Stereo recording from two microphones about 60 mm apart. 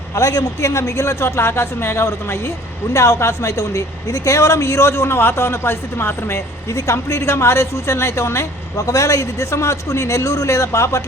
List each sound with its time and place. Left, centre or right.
0.1 s speech: left
0.7 s speech: left
2.9 s speech: left
8.9 s a man's voice: left